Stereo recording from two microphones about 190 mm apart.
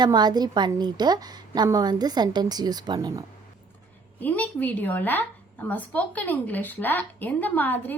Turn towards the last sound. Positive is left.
turn(degrees=10)  # may be behind; listen again after turning